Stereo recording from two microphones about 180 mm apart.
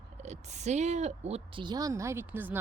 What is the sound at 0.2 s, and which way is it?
A woman's voice, 40° right (ahead or behind).